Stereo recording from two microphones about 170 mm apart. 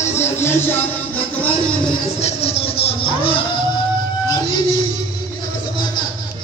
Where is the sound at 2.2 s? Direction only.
35° left (ahead or behind).